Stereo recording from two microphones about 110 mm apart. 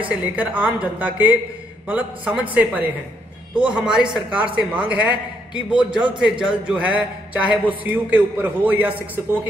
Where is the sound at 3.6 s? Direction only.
5° right (ahead or behind).